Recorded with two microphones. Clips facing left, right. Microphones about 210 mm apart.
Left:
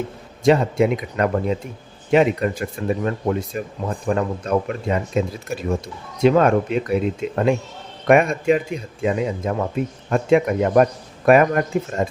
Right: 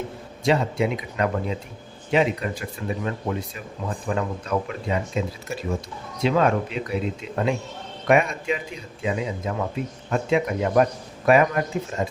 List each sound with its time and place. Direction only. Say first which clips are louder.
0.4 s speech: left 6 dB; 50° left (ahead or behind)
6.2 s speech: left 6 dB; 50° left (ahead or behind)